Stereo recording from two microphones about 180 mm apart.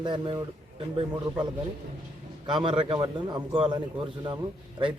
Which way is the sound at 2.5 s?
30° right (ahead or behind).